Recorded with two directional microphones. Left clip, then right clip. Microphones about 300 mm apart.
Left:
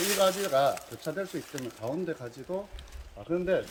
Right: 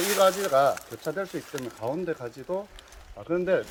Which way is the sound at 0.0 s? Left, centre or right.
Centre.